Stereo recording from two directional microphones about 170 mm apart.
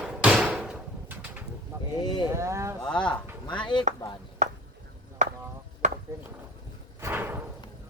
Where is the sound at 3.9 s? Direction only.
45° right (ahead or behind).